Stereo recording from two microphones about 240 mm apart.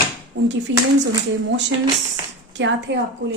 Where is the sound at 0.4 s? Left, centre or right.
Right.